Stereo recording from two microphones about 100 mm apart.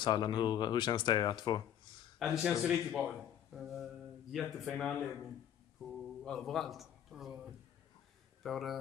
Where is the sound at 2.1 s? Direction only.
5° right (ahead or behind).